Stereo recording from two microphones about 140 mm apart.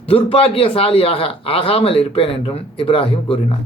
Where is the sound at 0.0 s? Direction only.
40° left (ahead or behind).